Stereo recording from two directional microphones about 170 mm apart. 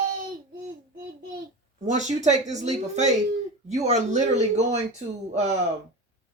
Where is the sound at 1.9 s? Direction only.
45° right (ahead or behind).